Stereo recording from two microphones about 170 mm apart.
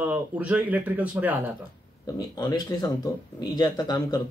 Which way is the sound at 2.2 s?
25° left (ahead or behind).